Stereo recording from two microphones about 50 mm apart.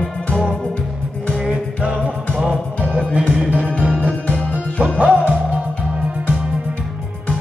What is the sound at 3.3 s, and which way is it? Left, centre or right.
Music, right.